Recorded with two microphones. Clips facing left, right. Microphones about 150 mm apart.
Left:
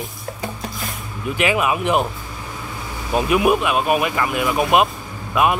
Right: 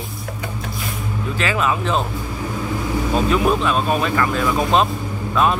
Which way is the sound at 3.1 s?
15° left (ahead or behind).